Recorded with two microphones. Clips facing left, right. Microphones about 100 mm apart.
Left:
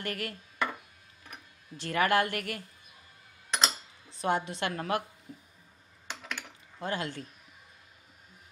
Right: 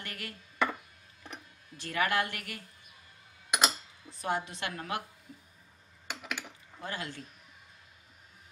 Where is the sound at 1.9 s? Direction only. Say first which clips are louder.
Left 4 dB; 45° left (ahead or behind).